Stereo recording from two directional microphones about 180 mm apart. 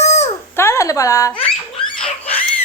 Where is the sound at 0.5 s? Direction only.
15° left (ahead or behind).